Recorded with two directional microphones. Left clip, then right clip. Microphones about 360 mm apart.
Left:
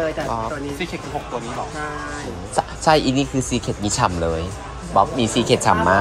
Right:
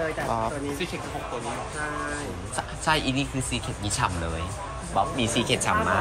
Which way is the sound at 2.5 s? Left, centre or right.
Centre.